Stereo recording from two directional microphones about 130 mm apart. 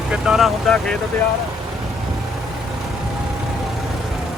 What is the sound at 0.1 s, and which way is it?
Speech, centre (ahead or behind).